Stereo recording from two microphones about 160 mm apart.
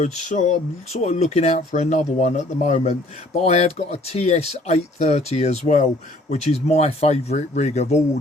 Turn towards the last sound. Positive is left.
turn(degrees=45)  # may be behind; listen again after turning